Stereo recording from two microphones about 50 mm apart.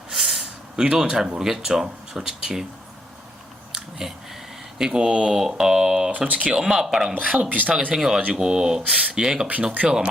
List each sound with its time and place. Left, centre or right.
0.1 s a sound: centre
0.9 s speech: centre
4.0 s speech: centre
6.1 s speech: right
6.6 s speech: centre
7.7 s speech: right
7.9 s speech: centre